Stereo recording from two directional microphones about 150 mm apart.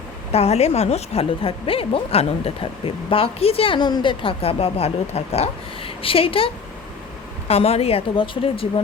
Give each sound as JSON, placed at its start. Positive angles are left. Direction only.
{"t": 0.3, "sound": "a woman's voice", "side_deg": 45}